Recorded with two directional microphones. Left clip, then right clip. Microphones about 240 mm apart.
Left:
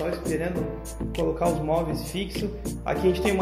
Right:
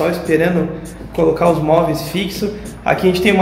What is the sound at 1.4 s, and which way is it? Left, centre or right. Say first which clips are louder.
A man's voice: right 11 dB; centre.